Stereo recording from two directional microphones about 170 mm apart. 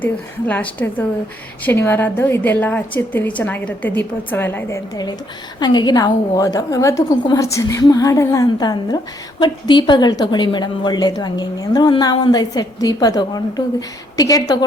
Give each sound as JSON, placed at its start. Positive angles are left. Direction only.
{"t": 0.0, "sound": "a woman's voice", "side_deg": 10}
{"t": 5.5, "sound": "a woman's voice", "side_deg": 25}